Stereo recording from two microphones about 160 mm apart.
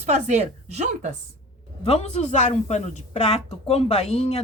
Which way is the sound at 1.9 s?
40° left (ahead or behind).